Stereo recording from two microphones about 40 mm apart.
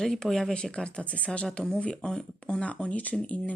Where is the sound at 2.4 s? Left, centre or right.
Left.